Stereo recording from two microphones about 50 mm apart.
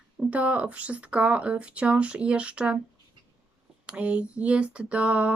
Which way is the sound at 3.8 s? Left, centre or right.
Right.